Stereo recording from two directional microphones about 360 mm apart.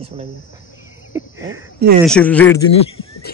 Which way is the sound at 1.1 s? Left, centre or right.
Centre.